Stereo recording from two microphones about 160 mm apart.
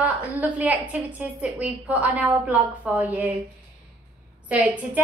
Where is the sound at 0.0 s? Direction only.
10° right (ahead or behind).